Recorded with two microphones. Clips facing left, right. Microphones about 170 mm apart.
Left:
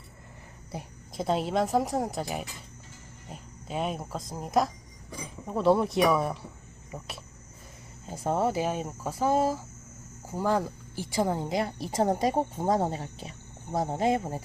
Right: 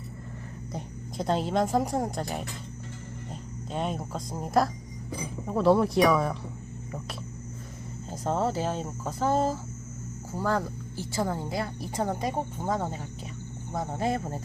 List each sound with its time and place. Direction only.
0.7 s a woman's voice: 5° left (ahead or behind)
8.0 s a woman's voice: 10° left (ahead or behind)
12.5 s speech: 35° left (ahead or behind)
13.8 s a woman's voice: 20° left (ahead or behind)